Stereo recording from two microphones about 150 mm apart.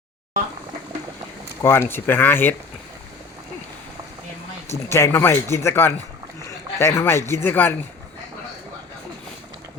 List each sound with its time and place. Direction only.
1.6 s speech: 15° left (ahead or behind)
4.9 s speech: 20° left (ahead or behind)